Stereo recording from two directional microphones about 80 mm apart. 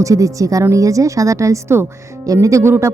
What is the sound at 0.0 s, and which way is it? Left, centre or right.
A woman's voice, right.